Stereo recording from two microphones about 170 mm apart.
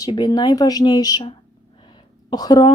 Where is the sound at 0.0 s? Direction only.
25° left (ahead or behind).